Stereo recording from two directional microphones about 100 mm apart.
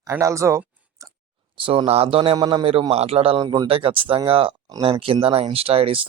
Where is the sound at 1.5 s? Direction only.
60° right (ahead or behind).